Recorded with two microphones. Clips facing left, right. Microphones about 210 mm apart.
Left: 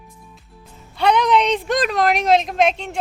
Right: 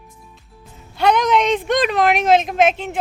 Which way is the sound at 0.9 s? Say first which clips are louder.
Even; centre (ahead or behind).